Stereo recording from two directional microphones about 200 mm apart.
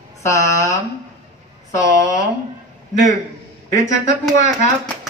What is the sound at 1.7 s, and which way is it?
Speech, 15° left (ahead or behind).